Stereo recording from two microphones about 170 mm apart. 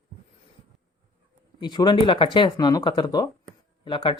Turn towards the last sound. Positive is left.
turn(degrees=30)  # may be behind; listen again after turning